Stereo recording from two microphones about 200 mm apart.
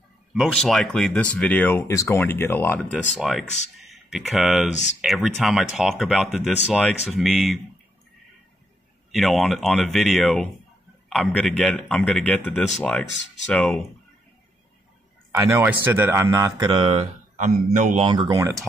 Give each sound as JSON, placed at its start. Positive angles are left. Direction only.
{"t": 0.3, "sound": "speech", "side_deg": 0}
{"t": 3.2, "sound": "speech", "side_deg": 0}
{"t": 9.1, "sound": "speech", "side_deg": 0}
{"t": 15.3, "sound": "speech", "side_deg": -10}
{"t": 17.7, "sound": "speech", "side_deg": -40}
{"t": 18.0, "sound": "speech", "side_deg": -25}